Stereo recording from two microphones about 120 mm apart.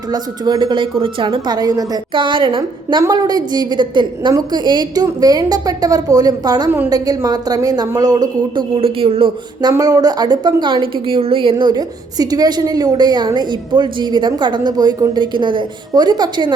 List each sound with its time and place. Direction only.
0.1 s a woman's voice: 35° right (ahead or behind)
3.0 s a woman's voice: 35° right (ahead or behind)
8.7 s speech: 50° right (ahead or behind)
9.7 s a woman's voice: 30° right (ahead or behind)